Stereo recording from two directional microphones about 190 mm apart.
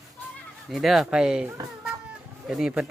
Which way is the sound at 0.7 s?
Centre (ahead or behind).